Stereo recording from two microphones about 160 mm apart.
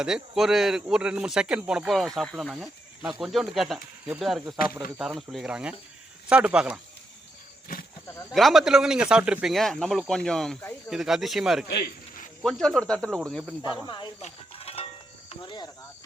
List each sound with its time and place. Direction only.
0.0 s speech: 5° right (ahead or behind)
8.0 s a sound: 20° left (ahead or behind)
8.3 s speech: centre (ahead or behind)
11.7 s a sound: 85° left
12.4 s speech: 5° left (ahead or behind)
13.8 s speech: 30° left (ahead or behind)
14.2 s livestock: 40° left (ahead or behind)
15.3 s cricket: 30° left (ahead or behind)